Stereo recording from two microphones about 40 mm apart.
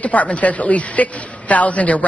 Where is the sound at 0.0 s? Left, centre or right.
Left.